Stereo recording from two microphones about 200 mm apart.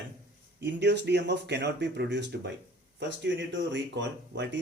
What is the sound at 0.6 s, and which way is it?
Speech, 60° right (ahead or behind).